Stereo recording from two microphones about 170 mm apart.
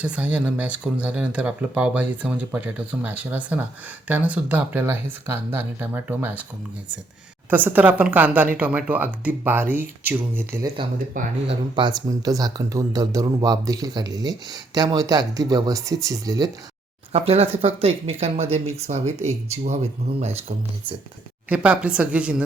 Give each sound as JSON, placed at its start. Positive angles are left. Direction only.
{"t": 0.0, "sound": "speech", "side_deg": -5}
{"t": 7.5, "sound": "speech", "side_deg": -10}
{"t": 11.1, "sound": "speech", "side_deg": -50}
{"t": 11.7, "sound": "speech", "side_deg": -25}
{"t": 17.1, "sound": "speech", "side_deg": -35}
{"t": 21.5, "sound": "speech", "side_deg": -5}